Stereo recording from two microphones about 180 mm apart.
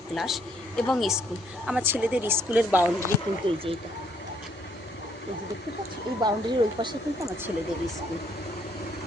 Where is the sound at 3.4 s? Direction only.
30° right (ahead or behind).